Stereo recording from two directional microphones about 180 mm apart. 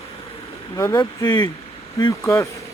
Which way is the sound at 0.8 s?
20° left (ahead or behind).